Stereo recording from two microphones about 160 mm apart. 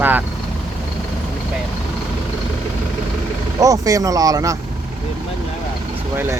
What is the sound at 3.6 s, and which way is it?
Speech, 20° right (ahead or behind).